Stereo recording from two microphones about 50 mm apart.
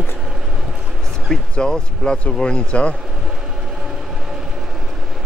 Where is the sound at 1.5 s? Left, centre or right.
Centre.